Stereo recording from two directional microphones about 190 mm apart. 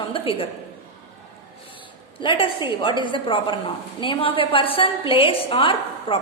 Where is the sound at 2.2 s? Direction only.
25° left (ahead or behind).